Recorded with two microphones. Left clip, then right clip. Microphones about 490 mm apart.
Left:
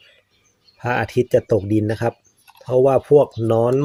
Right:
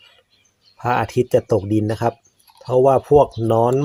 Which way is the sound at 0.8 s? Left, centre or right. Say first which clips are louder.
Right 1 dB; left.